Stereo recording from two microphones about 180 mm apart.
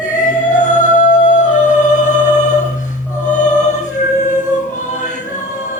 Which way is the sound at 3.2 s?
45° left (ahead or behind).